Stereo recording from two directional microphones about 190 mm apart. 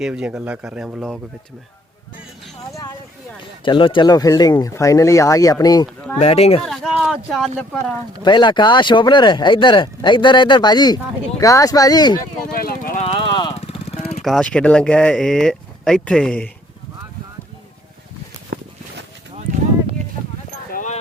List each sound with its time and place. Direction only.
0.0 s speech: 5° right (ahead or behind)
3.6 s speech: 25° left (ahead or behind)
6.1 s speech: 30° left (ahead or behind)
6.7 s speech: centre (ahead or behind)
8.2 s speech: 25° left (ahead or behind)
12.2 s vehicle: 50° left (ahead or behind)
13.1 s vehicle: 25° left (ahead or behind)
14.2 s speech: centre (ahead or behind)
18.5 s a sound: 55° right (ahead or behind)
20.7 s a sound: 40° left (ahead or behind)